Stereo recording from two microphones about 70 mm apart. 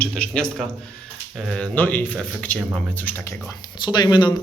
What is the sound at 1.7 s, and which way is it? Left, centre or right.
Speech, left.